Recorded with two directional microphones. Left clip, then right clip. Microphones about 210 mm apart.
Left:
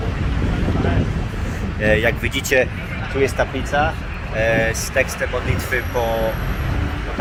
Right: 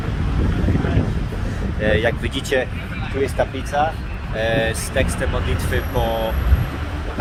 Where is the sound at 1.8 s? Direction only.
50° left (ahead or behind).